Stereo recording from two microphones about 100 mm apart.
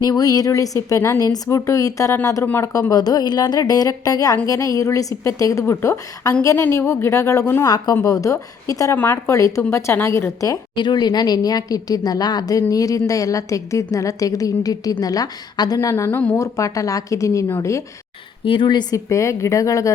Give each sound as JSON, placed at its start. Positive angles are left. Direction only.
{"t": 0.0, "sound": "a woman's voice", "side_deg": 40}
{"t": 9.0, "sound": "a woman's voice", "side_deg": 20}
{"t": 10.8, "sound": "a woman's voice", "side_deg": 45}
{"t": 16.0, "sound": "a woman's voice", "side_deg": 20}
{"t": 18.4, "sound": "a woman's voice", "side_deg": 55}
{"t": 18.9, "sound": "a woman's voice", "side_deg": 30}